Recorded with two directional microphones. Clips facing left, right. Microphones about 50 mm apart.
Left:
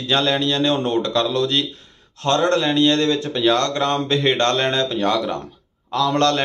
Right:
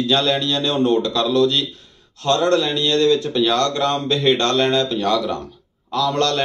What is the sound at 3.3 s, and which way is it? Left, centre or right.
Speech, centre.